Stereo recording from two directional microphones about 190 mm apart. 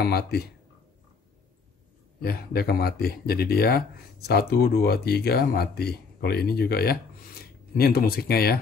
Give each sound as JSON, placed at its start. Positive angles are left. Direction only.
{"t": 0.0, "sound": "speech", "side_deg": 55}
{"t": 2.2, "sound": "speech", "side_deg": 55}